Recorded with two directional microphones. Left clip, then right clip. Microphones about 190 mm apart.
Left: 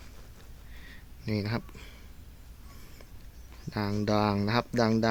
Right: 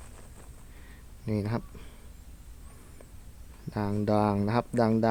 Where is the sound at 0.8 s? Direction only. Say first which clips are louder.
Right 1 dB; 5° right (ahead or behind).